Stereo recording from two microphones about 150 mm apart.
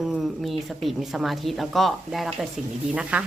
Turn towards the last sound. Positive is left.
turn(degrees=-10)  # may be behind; listen again after turning